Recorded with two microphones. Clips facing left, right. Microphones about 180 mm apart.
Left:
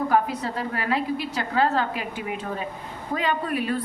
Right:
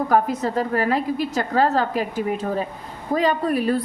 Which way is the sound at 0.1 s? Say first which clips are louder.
Right 4 dB; 45° right (ahead or behind).